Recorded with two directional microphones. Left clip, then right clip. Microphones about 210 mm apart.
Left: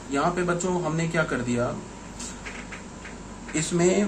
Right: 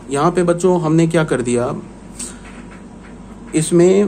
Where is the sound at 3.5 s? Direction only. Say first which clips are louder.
Right 11 dB; 40° right (ahead or behind).